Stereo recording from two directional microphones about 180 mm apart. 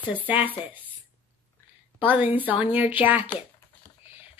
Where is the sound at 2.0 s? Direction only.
10° right (ahead or behind).